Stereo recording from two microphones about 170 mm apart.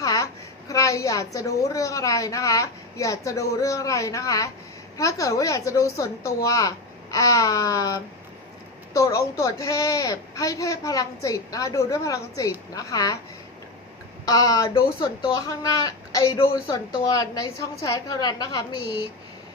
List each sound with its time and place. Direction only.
0.0 s a sound: 20° left (ahead or behind)
0.7 s a woman's voice: 20° left (ahead or behind)
14.3 s a woman's voice: 20° left (ahead or behind)